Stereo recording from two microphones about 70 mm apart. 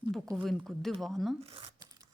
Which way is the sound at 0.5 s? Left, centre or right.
Centre.